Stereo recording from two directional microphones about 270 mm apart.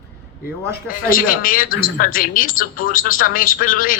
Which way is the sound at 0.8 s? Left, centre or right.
Left.